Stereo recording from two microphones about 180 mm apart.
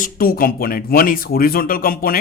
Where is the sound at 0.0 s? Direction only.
55° left (ahead or behind).